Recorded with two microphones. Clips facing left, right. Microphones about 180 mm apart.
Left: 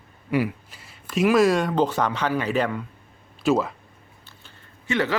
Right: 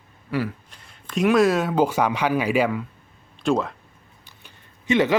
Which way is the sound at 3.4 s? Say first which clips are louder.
Left 1 dB; 5° left (ahead or behind).